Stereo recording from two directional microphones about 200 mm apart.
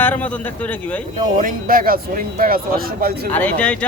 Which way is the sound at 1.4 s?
45° right (ahead or behind).